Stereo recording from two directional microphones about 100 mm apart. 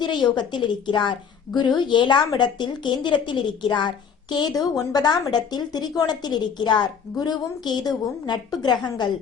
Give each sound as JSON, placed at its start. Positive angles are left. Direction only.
{"t": 0.0, "sound": "a woman's voice", "side_deg": 50}